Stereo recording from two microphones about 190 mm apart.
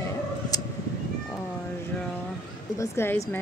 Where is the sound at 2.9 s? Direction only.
10° left (ahead or behind).